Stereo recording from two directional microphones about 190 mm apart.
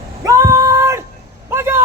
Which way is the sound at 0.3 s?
15° right (ahead or behind).